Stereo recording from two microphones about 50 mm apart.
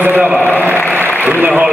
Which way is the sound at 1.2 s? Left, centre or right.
Right.